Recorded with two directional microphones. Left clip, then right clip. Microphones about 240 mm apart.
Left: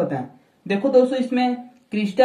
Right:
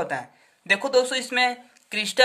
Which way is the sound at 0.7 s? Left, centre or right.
Right.